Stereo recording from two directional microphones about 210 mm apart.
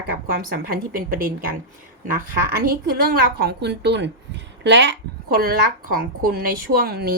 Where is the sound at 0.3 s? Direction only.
45° right (ahead or behind).